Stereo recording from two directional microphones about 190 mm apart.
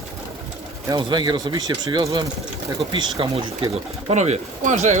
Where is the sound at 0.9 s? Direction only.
20° right (ahead or behind).